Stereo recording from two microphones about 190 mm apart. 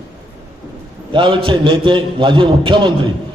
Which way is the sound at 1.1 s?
25° right (ahead or behind).